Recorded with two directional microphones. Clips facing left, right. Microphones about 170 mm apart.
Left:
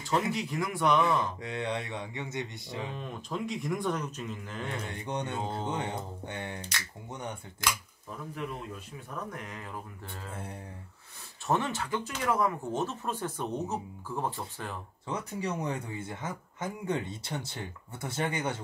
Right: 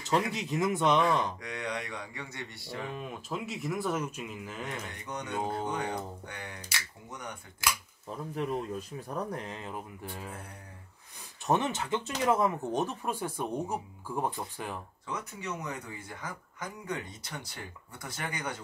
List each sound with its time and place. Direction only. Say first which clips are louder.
0.3 s speech: right 2 dB; 20° right (ahead or behind)
1.4 s speech: left 3 dB; 25° left (ahead or behind)
3.0 s speech: left 1 dB; 5° right (ahead or behind)
4.6 s speech: left 3 dB; 30° left (ahead or behind)
8.4 s speech: right 7 dB; 35° right (ahead or behind)
11.4 s speech: right 1 dB; 20° right (ahead or behind)
15.0 s speech: left 4 dB; 30° left (ahead or behind)